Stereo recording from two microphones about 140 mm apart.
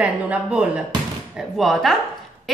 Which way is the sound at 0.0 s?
10° right (ahead or behind).